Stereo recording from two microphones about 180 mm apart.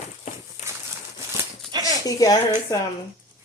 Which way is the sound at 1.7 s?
20° right (ahead or behind).